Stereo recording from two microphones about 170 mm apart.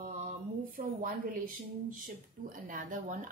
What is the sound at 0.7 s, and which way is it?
A woman's voice, 55° right (ahead or behind).